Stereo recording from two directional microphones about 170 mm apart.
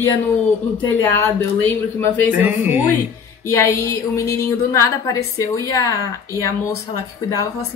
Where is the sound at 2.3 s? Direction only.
10° right (ahead or behind).